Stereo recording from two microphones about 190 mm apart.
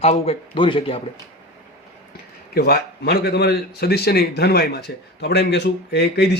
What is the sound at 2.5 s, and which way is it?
A man's voice, 55° left (ahead or behind).